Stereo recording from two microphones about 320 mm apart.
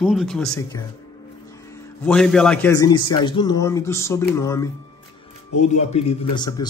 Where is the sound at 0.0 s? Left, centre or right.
Centre.